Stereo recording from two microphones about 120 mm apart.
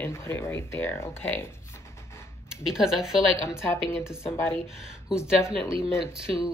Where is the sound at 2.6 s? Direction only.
5° right (ahead or behind).